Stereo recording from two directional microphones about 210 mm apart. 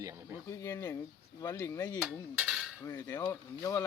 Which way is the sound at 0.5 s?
15° left (ahead or behind).